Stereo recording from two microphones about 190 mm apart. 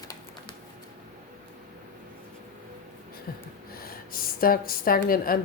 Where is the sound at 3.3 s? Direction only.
50° left (ahead or behind).